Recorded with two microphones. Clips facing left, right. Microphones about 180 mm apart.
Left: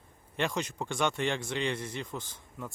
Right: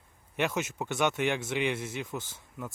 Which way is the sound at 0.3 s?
5° right (ahead or behind).